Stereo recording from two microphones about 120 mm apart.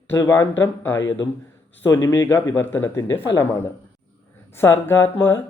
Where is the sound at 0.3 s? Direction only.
20° left (ahead or behind).